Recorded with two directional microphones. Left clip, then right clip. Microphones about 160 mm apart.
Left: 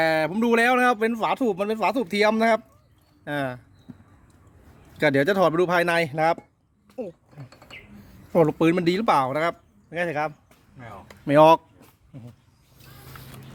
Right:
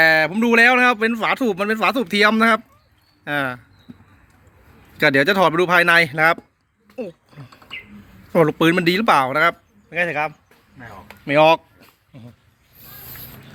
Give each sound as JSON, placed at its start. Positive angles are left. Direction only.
{"t": 0.0, "sound": "speech", "side_deg": 10}
{"t": 4.9, "sound": "speech", "side_deg": 10}
{"t": 6.9, "sound": "a sound", "side_deg": 10}
{"t": 8.3, "sound": "speech", "side_deg": 5}
{"t": 9.9, "sound": "speech", "side_deg": 20}
{"t": 11.3, "sound": "speech", "side_deg": 35}